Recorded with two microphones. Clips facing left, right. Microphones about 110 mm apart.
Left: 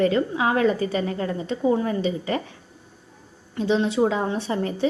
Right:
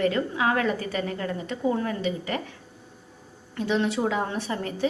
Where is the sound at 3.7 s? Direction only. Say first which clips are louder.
Left 4 dB; 20° left (ahead or behind).